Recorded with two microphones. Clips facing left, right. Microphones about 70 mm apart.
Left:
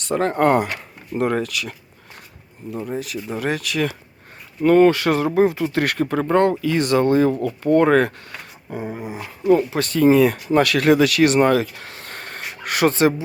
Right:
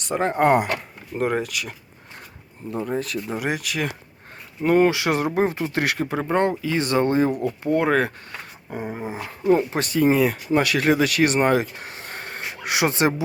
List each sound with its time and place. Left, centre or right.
0.1 s speech: centre
2.8 s speech: right
3.2 s speech: centre
8.7 s speech: centre
9.9 s speech: centre
11.4 s a sound: right